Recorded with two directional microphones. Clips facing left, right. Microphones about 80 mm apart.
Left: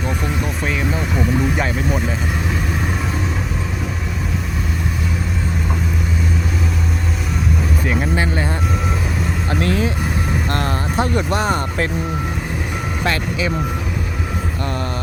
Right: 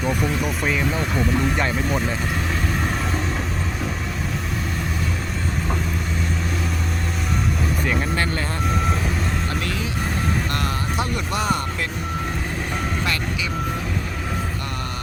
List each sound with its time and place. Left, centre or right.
0.0 s speech: centre
7.9 s speech: centre
9.5 s speech: left
10.5 s speech: left